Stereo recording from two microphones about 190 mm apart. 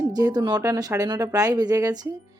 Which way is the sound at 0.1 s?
20° right (ahead or behind).